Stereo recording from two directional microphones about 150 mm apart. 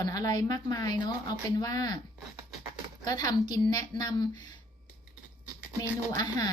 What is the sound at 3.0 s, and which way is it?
A woman's voice, 25° left (ahead or behind).